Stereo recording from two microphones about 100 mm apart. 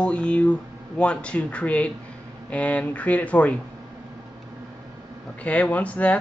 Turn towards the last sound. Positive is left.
turn(degrees=15)  # may be behind; listen again after turning